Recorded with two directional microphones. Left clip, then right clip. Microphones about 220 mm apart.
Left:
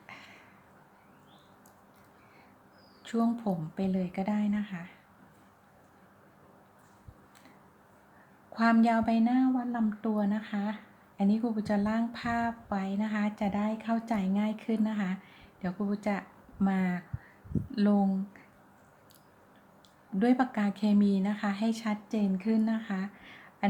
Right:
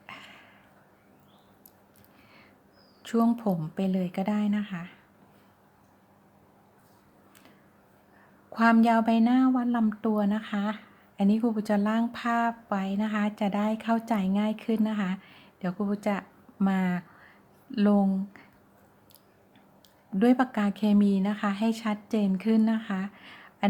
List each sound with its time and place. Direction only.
0.0 s a sound: 25° right (ahead or behind)
3.0 s a woman's voice: 25° right (ahead or behind)
8.5 s a woman's voice: 20° right (ahead or behind)
20.1 s a woman's voice: 20° right (ahead or behind)